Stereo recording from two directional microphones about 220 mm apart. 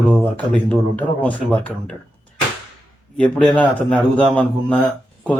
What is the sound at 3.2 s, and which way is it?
Speech, 5° left (ahead or behind).